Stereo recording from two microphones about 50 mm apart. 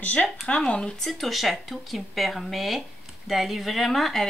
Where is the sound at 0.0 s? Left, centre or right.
Left.